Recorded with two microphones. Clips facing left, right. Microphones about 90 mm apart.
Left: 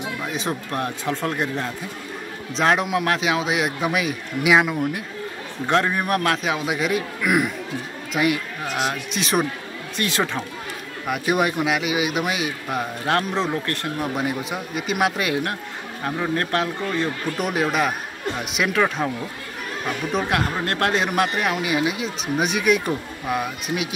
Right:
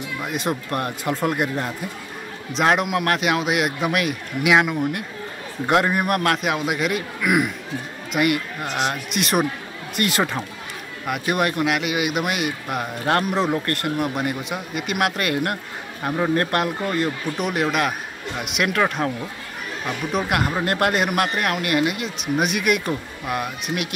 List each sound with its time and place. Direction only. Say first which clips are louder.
0.2 s a man's voice: right 5 dB; 5° right (ahead or behind)